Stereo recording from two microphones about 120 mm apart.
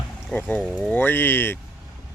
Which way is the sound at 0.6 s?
Centre (ahead or behind).